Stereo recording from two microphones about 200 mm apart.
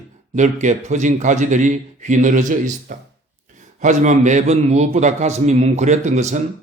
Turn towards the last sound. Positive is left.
turn(degrees=-35)  # may be behind; listen again after turning